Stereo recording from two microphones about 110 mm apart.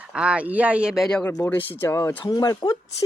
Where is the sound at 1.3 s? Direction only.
25° left (ahead or behind).